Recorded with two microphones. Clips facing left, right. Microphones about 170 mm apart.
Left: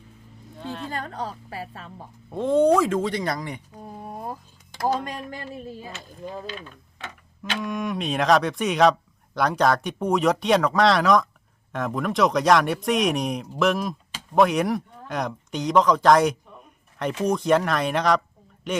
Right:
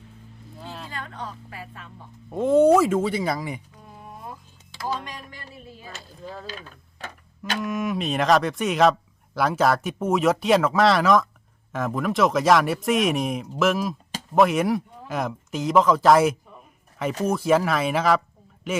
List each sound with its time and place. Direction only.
0.6 s a sound: centre (ahead or behind)
0.9 s a woman's voice: 40° left (ahead or behind)
2.3 s speech: 5° right (ahead or behind)
3.8 s a sound: 40° left (ahead or behind)
4.8 s speech: 50° left (ahead or behind)
6.0 s speech: 15° left (ahead or behind)
7.6 s speech: centre (ahead or behind)